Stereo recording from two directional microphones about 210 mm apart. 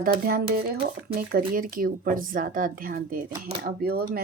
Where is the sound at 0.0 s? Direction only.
45° right (ahead or behind).